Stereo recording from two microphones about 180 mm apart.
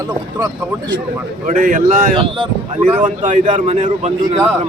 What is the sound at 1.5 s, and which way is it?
Speech, 45° right (ahead or behind).